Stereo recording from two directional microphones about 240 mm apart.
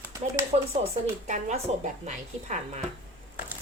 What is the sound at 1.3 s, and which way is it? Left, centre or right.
A woman's voice, right.